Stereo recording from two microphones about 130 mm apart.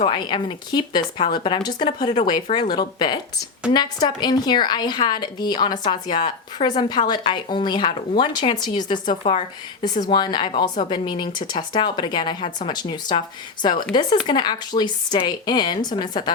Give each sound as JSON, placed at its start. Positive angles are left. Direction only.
{"t": 0.0, "sound": "speech", "side_deg": 35}